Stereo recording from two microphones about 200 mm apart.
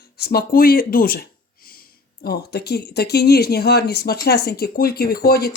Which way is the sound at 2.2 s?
50° left (ahead or behind).